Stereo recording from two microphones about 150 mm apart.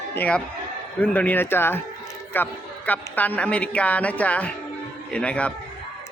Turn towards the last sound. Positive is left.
turn(degrees=10)  # may be behind; listen again after turning